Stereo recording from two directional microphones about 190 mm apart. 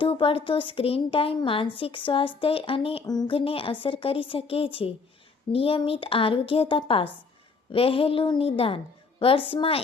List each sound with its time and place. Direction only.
0.0 s a woman's voice: 30° left (ahead or behind)